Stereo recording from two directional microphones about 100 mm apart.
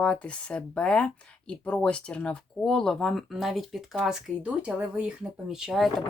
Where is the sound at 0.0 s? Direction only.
10° left (ahead or behind).